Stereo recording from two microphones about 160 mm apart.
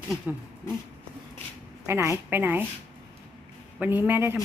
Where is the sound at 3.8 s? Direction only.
10° right (ahead or behind).